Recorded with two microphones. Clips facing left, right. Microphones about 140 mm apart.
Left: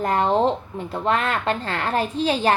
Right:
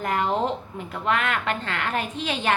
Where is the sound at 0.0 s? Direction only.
35° left (ahead or behind).